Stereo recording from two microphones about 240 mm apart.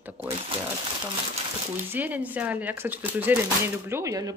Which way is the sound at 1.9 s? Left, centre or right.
Centre.